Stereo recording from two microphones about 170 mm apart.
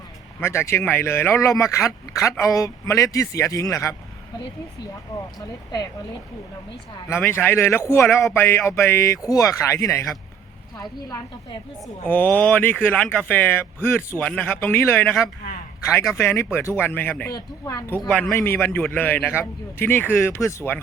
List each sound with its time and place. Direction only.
0.3 s speech: 15° left (ahead or behind)
5.1 s a woman's voice: 20° left (ahead or behind)
7.1 s a woman's voice: 15° left (ahead or behind)
12.0 s speech: 10° left (ahead or behind)
17.3 s speech: 20° left (ahead or behind)